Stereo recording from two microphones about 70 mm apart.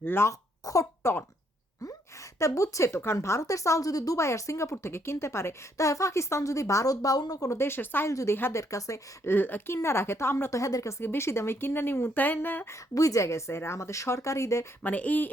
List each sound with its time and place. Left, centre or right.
0.0 s a woman's voice: left
0.6 s speech: left
2.4 s a woman's voice: left
7.6 s a woman's voice: left
8.1 s a woman's voice: left
9.2 s a woman's voice: left
11.0 s a woman's voice: left
12.7 s a woman's voice: left
14.8 s speech: left